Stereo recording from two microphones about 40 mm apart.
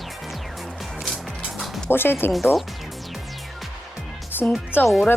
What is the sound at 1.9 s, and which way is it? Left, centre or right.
Speech, left.